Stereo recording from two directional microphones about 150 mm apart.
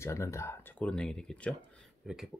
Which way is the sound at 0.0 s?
20° left (ahead or behind).